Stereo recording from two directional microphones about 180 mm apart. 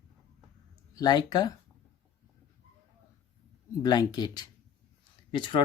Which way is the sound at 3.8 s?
20° left (ahead or behind).